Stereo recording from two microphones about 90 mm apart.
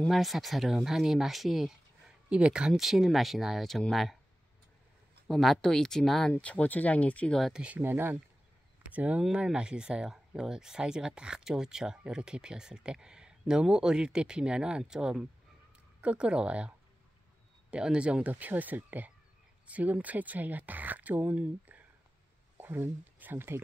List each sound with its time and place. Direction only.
0.1 s speech: centre (ahead or behind)
5.3 s speech: 5° left (ahead or behind)
6.3 s speech: 15° left (ahead or behind)
7.5 s speech: 15° right (ahead or behind)